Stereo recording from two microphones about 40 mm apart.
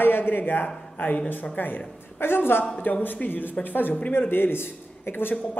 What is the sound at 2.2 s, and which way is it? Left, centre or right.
Speech, left.